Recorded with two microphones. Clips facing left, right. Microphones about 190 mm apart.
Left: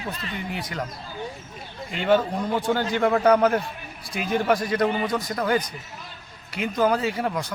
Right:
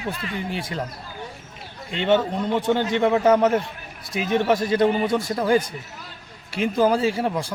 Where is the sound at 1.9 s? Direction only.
25° right (ahead or behind).